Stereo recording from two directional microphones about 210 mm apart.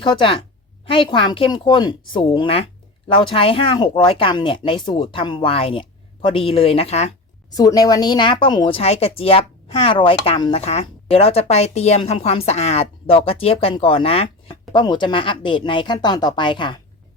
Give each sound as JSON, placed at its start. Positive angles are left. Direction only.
{"t": 0.0, "sound": "speech", "side_deg": 25}
{"t": 7.5, "sound": "speech", "side_deg": 15}